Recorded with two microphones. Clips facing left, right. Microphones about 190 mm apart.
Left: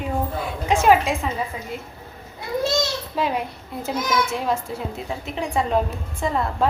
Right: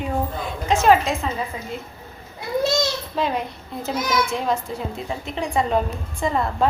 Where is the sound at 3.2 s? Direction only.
10° left (ahead or behind).